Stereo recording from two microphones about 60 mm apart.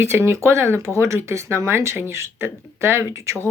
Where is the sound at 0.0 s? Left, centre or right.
Right.